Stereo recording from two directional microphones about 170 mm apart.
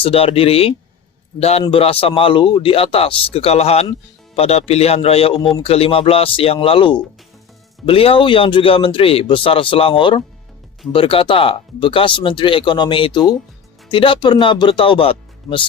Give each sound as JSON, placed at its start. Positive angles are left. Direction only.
{"t": 0.0, "sound": "speech", "side_deg": 35}